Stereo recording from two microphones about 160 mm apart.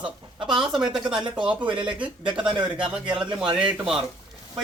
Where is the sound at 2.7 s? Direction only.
5° right (ahead or behind).